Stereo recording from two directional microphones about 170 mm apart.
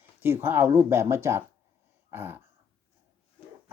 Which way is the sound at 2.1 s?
10° right (ahead or behind).